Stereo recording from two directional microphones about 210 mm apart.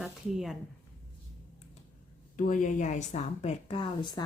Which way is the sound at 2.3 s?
40° left (ahead or behind).